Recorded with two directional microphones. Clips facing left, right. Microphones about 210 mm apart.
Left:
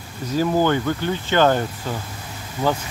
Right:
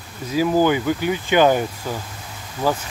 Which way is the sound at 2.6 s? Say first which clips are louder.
Even; 5° left (ahead or behind).